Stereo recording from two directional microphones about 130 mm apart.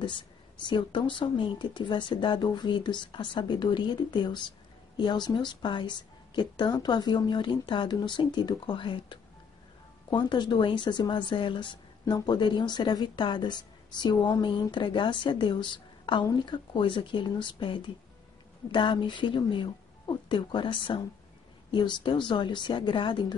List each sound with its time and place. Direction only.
0.0 s speech: 40° left (ahead or behind)